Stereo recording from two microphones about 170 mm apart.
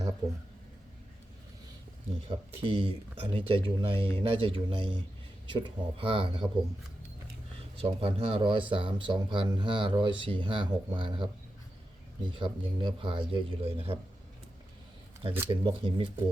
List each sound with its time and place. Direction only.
2.2 s speech: 30° right (ahead or behind)
7.8 s speech: 35° right (ahead or behind)
15.4 s speech: 30° right (ahead or behind)